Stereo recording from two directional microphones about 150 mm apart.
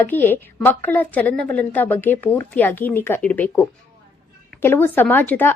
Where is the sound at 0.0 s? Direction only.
15° left (ahead or behind).